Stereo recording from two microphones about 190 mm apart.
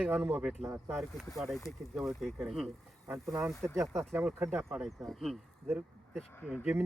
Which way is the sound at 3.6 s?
15° right (ahead or behind).